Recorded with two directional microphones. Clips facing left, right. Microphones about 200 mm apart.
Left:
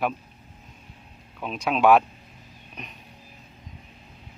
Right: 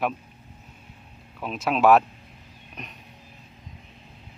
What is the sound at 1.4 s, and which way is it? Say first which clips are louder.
Speech: even; centre (ahead or behind).